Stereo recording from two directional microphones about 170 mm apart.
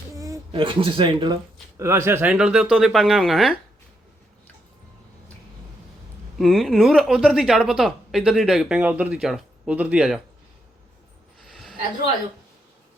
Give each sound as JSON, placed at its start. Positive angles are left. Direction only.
{"t": 0.1, "sound": "a sound", "side_deg": -20}
{"t": 0.5, "sound": "speech", "side_deg": -30}
{"t": 1.8, "sound": "speech", "side_deg": -15}
{"t": 6.4, "sound": "speech", "side_deg": 0}